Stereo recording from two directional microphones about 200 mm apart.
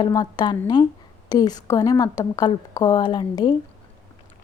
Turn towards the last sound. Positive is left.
turn(degrees=20)  # may be behind; listen again after turning